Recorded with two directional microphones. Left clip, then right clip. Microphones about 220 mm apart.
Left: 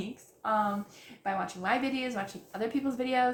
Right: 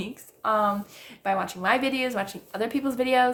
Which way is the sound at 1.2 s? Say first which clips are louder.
Right 7 dB; 45° right (ahead or behind).